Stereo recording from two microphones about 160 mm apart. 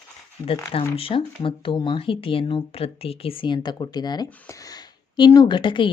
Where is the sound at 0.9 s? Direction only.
35° left (ahead or behind).